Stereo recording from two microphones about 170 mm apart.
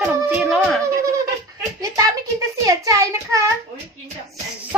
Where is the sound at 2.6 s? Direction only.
20° right (ahead or behind).